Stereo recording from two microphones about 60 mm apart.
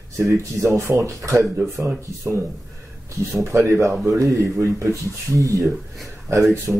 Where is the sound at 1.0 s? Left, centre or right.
Right.